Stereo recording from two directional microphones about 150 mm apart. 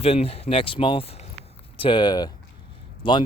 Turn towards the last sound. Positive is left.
turn(degrees=35)  # may be behind; listen again after turning